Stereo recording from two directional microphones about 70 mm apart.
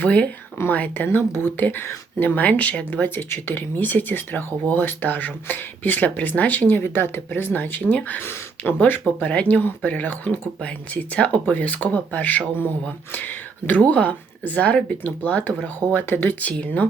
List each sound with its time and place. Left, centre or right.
0.0 s speech: centre
3.2 s speech: left
16.5 s speech: centre